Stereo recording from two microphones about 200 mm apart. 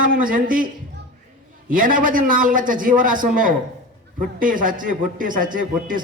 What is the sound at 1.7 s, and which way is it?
A man's voice, 45° right (ahead or behind).